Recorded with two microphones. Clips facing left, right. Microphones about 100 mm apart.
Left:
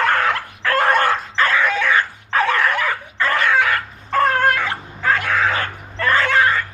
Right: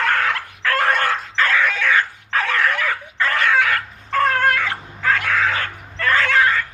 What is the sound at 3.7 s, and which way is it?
Dog, 20° left (ahead or behind).